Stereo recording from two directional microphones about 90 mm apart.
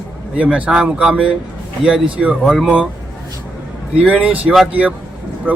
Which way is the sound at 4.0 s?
15° right (ahead or behind).